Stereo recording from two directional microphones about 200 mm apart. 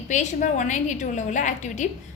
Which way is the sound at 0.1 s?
35° left (ahead or behind).